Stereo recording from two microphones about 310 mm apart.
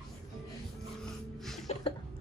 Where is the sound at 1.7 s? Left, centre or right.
Left.